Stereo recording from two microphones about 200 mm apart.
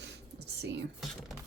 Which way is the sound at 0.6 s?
60° right (ahead or behind).